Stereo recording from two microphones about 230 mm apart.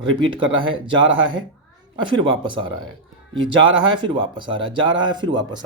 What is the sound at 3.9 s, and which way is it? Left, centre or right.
A man's voice, right.